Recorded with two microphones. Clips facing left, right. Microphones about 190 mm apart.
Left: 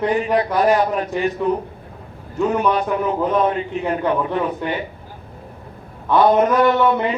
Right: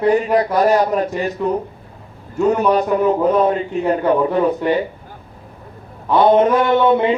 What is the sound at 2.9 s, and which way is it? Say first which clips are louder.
Speech: right 5 dB; 40° right (ahead or behind).